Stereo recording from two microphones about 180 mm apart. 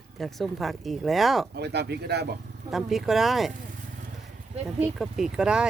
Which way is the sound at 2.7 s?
Centre (ahead or behind).